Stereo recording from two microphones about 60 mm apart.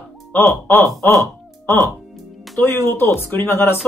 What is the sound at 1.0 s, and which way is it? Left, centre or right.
Speech, left.